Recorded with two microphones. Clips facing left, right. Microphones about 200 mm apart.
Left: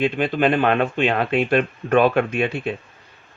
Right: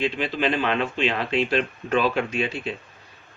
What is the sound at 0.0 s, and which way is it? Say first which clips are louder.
Speech: left 5 dB; 55° left (ahead or behind).